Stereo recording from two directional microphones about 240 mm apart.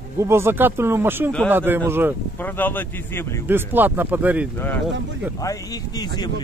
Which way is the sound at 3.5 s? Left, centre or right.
Centre.